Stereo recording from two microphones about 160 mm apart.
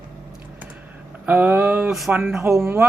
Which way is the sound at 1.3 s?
10° right (ahead or behind).